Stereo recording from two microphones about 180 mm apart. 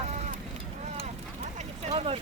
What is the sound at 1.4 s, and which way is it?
Vehicle, 40° right (ahead or behind).